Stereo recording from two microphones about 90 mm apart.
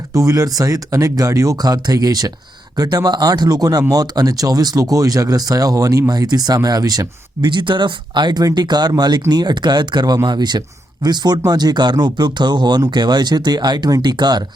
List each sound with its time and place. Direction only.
0.1 s speech: 40° right (ahead or behind)